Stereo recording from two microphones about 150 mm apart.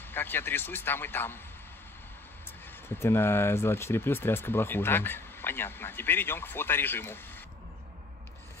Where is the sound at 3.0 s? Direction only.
15° left (ahead or behind).